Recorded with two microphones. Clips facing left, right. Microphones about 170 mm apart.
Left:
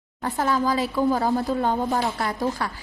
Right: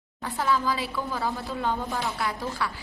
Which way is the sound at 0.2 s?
45° left (ahead or behind).